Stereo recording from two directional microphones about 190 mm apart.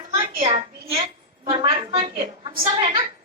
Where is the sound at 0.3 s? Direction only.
35° right (ahead or behind).